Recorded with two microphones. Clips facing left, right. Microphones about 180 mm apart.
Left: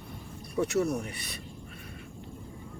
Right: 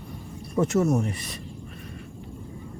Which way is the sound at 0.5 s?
50° right (ahead or behind).